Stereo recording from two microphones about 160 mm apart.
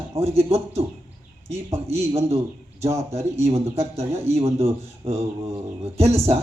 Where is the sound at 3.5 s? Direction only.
40° right (ahead or behind).